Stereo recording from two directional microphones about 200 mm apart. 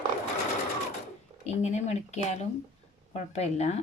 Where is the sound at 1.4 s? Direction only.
35° left (ahead or behind).